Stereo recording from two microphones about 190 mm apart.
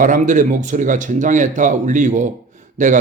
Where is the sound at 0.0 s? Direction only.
45° right (ahead or behind).